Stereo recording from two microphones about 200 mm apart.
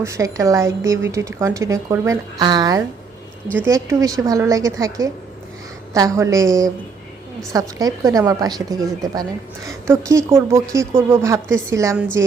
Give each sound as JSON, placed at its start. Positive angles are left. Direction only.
{"t": 0.0, "sound": "speech", "side_deg": -15}